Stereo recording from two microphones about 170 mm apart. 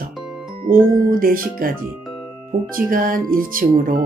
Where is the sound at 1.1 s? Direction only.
55° right (ahead or behind).